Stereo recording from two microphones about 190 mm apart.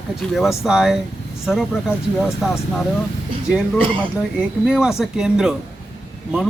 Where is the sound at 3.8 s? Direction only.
25° right (ahead or behind).